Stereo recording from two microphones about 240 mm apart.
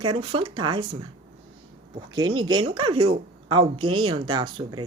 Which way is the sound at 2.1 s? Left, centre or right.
Centre.